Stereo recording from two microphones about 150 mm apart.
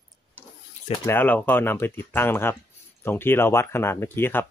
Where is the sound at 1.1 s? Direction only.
15° left (ahead or behind).